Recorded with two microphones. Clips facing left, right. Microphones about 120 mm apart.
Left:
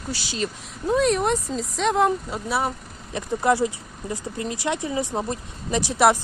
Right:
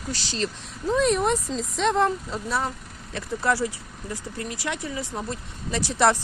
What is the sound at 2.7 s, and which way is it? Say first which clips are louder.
Speech: left 4 dB; 20° left (ahead or behind).